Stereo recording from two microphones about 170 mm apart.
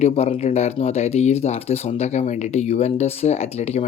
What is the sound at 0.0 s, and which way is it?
Speech, 35° left (ahead or behind).